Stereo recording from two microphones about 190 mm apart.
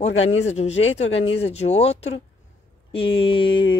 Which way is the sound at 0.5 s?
35° left (ahead or behind).